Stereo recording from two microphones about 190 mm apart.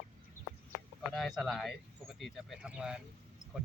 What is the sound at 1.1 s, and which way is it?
Speech, centre (ahead or behind).